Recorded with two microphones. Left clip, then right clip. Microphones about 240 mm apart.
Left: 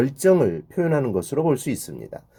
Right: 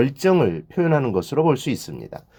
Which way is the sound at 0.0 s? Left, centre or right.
Right.